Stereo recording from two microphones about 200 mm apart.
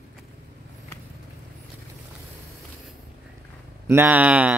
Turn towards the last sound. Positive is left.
turn(degrees=-5)  # may be behind; listen again after turning